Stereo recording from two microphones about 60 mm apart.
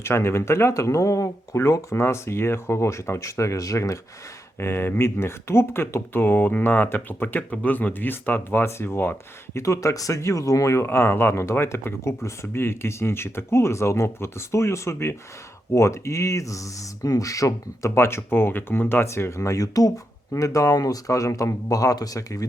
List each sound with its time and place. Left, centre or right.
0.0 s speech: left
1.5 s speech: left
4.6 s speech: left
9.6 s speech: left
10.8 s speech: left
19.0 s speech: left
20.3 s speech: left